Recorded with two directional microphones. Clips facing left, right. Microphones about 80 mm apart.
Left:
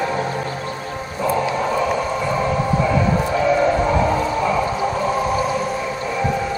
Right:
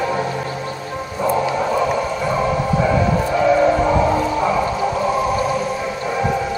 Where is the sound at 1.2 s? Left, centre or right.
Centre.